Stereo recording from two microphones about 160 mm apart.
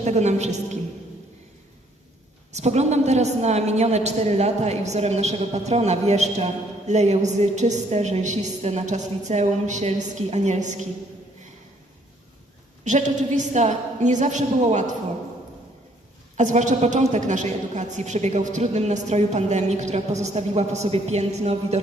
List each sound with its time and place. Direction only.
0.0 s a woman's voice: 45° right (ahead or behind)
2.5 s a woman's voice: 45° right (ahead or behind)
12.8 s a woman's voice: 50° right (ahead or behind)
16.4 s a woman's voice: 50° right (ahead or behind)